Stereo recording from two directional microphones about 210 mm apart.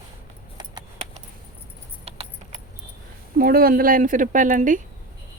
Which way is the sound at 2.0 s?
30° right (ahead or behind).